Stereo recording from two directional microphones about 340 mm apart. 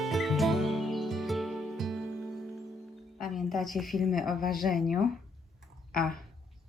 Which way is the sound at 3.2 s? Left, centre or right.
Centre.